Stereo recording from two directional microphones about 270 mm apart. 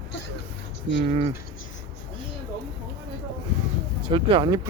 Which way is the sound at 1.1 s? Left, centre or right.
Right.